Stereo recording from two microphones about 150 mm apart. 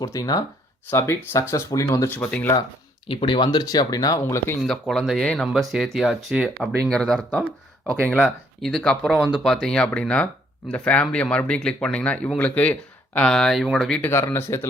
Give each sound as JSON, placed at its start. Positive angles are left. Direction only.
{"t": 0.0, "sound": "speech", "side_deg": 25}
{"t": 3.1, "sound": "speech", "side_deg": 35}
{"t": 4.6, "sound": "speech", "side_deg": 5}
{"t": 14.0, "sound": "speech", "side_deg": 15}